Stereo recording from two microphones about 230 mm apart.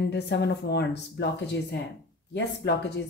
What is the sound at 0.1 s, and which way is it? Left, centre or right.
Speech, left.